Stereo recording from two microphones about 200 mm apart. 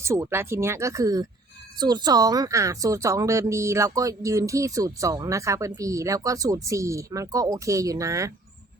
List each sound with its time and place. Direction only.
0.0 s a woman's voice: 15° right (ahead or behind)